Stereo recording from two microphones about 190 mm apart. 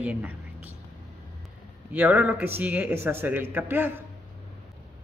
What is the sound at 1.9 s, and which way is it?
Speech, 10° right (ahead or behind).